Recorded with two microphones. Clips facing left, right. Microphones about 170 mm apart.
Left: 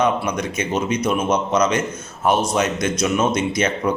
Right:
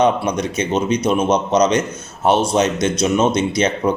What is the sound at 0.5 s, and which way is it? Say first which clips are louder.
A man's voice: right 4 dB; 35° right (ahead or behind).